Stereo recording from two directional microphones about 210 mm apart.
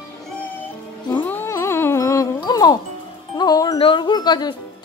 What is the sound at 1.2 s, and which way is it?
Music, 10° left (ahead or behind).